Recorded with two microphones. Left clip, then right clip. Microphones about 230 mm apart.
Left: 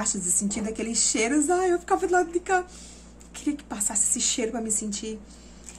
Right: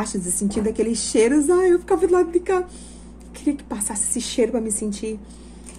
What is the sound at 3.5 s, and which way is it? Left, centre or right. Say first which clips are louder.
Speech: right 1 dB; centre.